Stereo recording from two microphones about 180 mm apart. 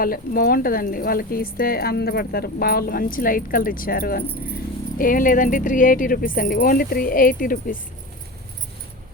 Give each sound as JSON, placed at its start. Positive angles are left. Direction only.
{"t": 0.0, "sound": "a woman's voice", "side_deg": 55}